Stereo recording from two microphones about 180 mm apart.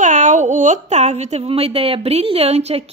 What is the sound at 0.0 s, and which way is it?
A woman's voice, 45° right (ahead or behind).